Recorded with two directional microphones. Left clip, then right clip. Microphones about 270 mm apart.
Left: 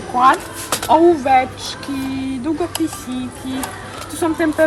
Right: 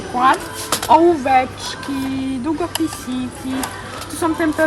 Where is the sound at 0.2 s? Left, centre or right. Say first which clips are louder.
Left 2 dB; centre.